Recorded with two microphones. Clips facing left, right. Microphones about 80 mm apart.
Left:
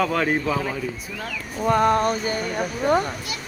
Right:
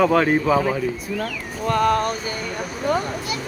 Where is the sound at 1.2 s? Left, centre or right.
Centre.